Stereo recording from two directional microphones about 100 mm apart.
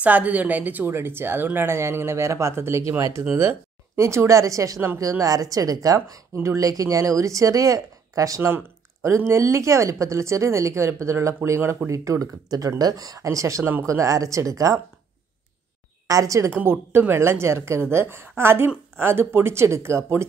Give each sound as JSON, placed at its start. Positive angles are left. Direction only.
{"t": 0.0, "sound": "a woman's voice", "side_deg": -15}
{"t": 16.1, "sound": "speech", "side_deg": -35}
{"t": 16.5, "sound": "a woman's voice", "side_deg": -20}